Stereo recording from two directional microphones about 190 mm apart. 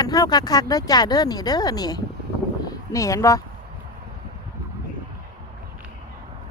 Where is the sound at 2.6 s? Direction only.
20° left (ahead or behind).